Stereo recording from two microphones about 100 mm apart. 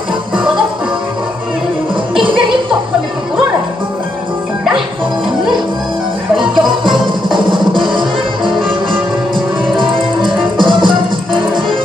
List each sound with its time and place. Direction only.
7.3 s music: 55° right (ahead or behind)
10.6 s music: 55° right (ahead or behind)